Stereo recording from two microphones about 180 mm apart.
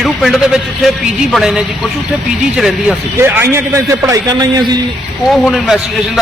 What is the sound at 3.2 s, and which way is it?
A man's voice, 15° right (ahead or behind).